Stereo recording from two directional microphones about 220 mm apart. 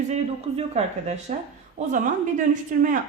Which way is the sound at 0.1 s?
30° right (ahead or behind).